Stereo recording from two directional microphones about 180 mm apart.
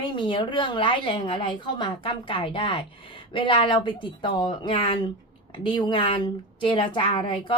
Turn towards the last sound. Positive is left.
turn(degrees=25)  # may be behind; listen again after turning